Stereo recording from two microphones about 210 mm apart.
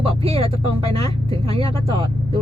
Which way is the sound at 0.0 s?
25° right (ahead or behind).